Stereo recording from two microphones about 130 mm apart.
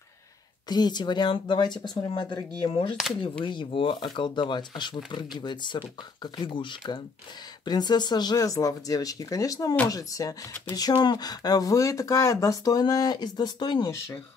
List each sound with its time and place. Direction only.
0.7 s speech: 35° left (ahead or behind)